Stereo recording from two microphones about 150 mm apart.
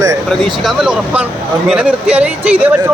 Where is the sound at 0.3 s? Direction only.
Centre (ahead or behind).